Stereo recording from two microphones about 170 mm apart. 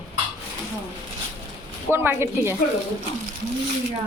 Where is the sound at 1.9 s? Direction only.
15° right (ahead or behind).